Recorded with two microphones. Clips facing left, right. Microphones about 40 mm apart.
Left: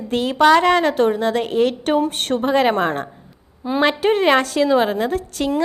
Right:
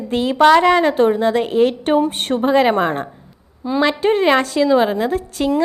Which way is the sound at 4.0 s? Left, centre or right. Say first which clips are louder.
Right 1 dB; centre.